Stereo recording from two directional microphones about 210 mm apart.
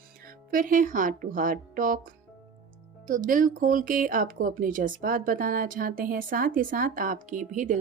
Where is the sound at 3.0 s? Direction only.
40° right (ahead or behind).